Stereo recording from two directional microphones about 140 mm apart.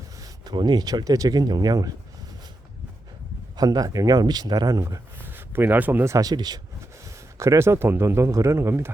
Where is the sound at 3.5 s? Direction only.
25° right (ahead or behind).